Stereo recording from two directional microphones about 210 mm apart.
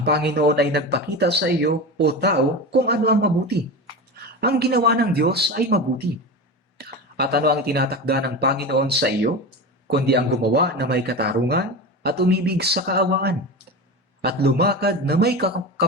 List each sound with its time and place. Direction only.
0.0 s speech: 50° right (ahead or behind)
4.4 s speech: 50° right (ahead or behind)